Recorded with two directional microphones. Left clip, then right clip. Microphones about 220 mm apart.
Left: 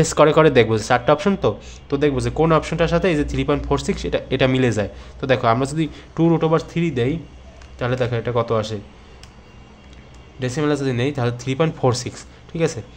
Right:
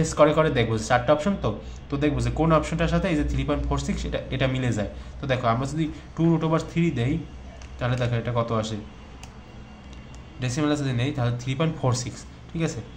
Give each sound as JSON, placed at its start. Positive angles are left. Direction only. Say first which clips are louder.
{"t": 0.0, "sound": "speech", "louder": "left 6 dB", "side_deg": 40}
{"t": 10.4, "sound": "speech", "louder": "left 5 dB", "side_deg": 30}